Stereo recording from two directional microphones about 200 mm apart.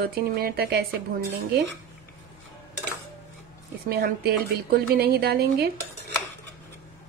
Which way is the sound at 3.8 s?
50° right (ahead or behind).